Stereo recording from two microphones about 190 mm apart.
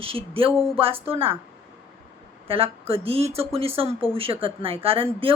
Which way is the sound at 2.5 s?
30° right (ahead or behind).